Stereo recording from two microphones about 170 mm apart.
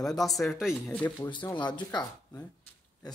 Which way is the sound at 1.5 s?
25° left (ahead or behind).